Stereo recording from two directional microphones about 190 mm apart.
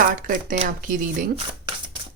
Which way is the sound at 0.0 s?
45° right (ahead or behind).